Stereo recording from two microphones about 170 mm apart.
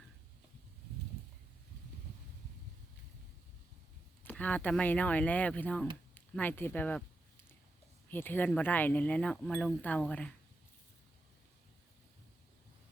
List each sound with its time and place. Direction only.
4.2 s speech: 10° left (ahead or behind)
6.1 s a sound: 10° left (ahead or behind)
8.1 s speech: 10° left (ahead or behind)